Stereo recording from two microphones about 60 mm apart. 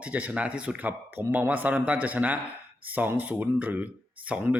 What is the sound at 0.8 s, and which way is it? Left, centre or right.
A man's voice, right.